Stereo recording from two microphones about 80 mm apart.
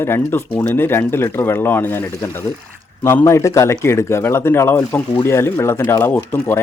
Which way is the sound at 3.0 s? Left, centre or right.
Left.